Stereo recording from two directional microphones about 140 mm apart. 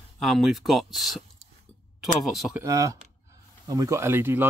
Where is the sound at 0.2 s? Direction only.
Centre (ahead or behind).